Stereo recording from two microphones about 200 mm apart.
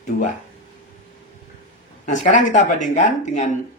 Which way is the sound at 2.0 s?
40° left (ahead or behind).